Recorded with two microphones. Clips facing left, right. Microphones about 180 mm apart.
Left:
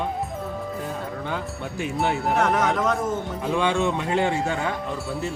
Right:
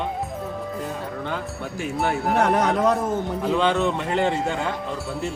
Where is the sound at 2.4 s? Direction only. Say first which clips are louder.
Right 3 dB; 30° right (ahead or behind).